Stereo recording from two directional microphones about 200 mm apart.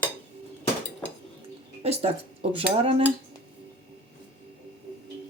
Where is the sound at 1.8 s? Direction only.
30° right (ahead or behind).